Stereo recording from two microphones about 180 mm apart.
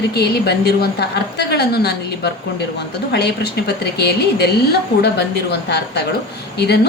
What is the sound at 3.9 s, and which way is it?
A woman's voice, 65° left (ahead or behind).